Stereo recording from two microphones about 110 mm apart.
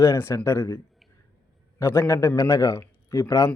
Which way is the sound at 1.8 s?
25° left (ahead or behind).